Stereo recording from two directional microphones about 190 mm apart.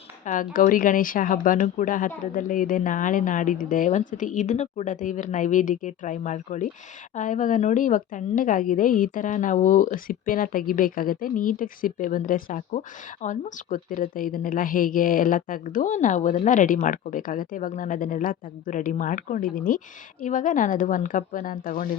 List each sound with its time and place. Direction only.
0.3 s a woman's voice: 45° left (ahead or behind)